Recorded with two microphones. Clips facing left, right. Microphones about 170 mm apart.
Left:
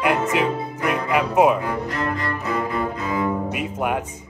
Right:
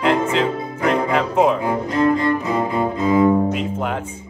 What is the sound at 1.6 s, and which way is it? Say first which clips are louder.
Cello: right 7 dB; 25° right (ahead or behind).